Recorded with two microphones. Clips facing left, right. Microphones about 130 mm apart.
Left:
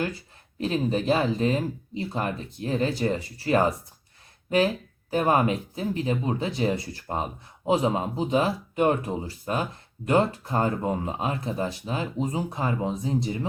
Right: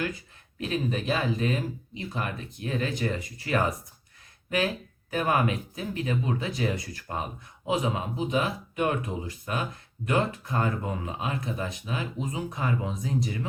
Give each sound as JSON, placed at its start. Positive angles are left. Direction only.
{"t": 0.6, "sound": "speech", "side_deg": 30}